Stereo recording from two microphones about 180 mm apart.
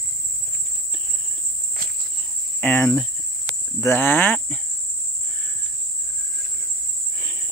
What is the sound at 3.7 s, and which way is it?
Speech, 10° left (ahead or behind).